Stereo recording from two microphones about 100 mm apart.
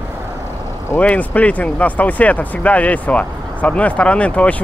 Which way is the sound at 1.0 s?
15° left (ahead or behind).